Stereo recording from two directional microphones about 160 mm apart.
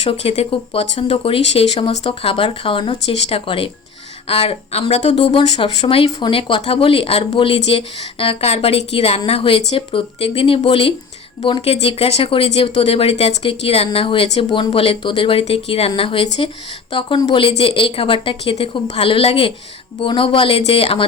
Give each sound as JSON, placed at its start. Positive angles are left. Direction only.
{"t": 0.0, "sound": "speech", "side_deg": 40}